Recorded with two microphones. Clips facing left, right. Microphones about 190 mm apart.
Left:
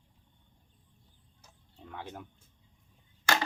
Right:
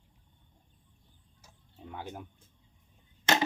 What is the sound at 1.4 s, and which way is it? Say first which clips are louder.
Tick-tock: right 3 dB; 10° right (ahead or behind).